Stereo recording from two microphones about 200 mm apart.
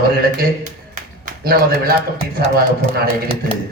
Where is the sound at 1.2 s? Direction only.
50° right (ahead or behind).